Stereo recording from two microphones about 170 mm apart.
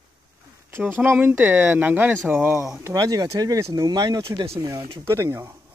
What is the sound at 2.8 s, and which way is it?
Speech, 20° right (ahead or behind).